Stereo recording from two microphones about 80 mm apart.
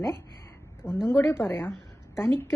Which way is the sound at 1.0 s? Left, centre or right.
Left.